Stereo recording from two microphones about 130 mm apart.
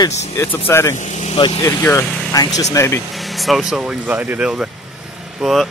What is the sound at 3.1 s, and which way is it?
Speech, centre (ahead or behind).